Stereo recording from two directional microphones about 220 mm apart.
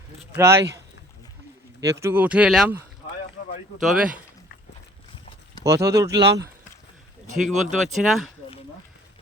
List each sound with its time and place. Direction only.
0.3 s speech: 10° right (ahead or behind)
1.8 s speech: 15° right (ahead or behind)
3.8 s speech: centre (ahead or behind)
5.6 s speech: 15° right (ahead or behind)
7.3 s speech: centre (ahead or behind)